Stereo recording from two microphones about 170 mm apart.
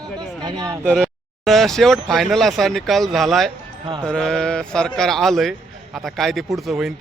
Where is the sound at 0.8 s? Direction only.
5° left (ahead or behind).